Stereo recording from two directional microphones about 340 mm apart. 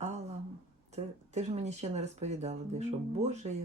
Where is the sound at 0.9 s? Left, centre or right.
Centre.